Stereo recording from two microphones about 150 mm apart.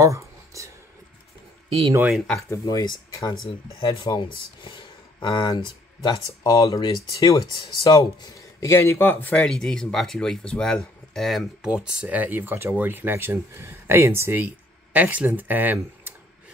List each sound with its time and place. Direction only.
0.0 s a sound: 20° right (ahead or behind)
2.0 s speech: 5° right (ahead or behind)
2.5 s speech: 25° left (ahead or behind); by 16.1 s 10° right (ahead or behind)